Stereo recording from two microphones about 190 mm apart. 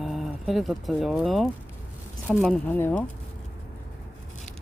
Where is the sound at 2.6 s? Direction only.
10° left (ahead or behind).